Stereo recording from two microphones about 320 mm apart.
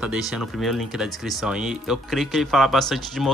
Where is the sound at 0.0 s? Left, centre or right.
Centre.